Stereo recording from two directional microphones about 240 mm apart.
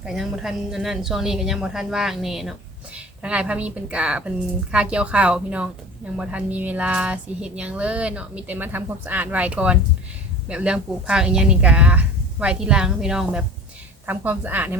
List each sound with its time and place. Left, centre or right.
0.0 s a woman's voice: centre